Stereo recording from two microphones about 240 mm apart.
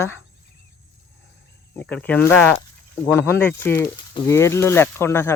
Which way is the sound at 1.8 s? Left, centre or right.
Centre.